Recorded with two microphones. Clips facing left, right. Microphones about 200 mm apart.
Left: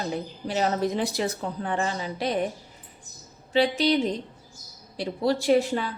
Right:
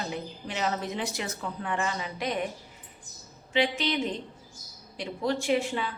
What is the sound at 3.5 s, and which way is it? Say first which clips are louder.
A woman's voice: left 5 dB; 35° left (ahead or behind).